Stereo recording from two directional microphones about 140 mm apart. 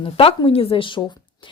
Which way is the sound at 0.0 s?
40° left (ahead or behind).